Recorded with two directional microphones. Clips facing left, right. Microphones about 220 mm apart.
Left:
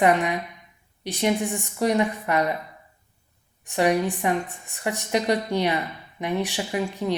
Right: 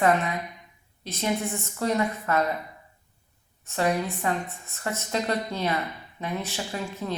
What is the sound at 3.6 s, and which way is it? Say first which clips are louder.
Speech: left 4 dB; 15° left (ahead or behind).